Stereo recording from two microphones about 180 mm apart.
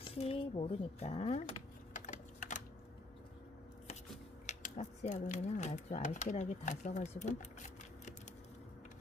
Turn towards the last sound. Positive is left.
turn(degrees=40)  # may be behind; listen again after turning